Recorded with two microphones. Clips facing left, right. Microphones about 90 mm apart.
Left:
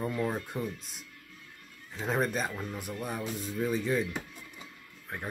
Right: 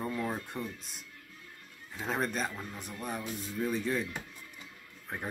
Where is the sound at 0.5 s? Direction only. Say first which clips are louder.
Left 4 dB; 5° left (ahead or behind).